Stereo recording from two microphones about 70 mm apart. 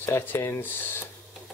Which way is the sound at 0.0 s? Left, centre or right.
Left.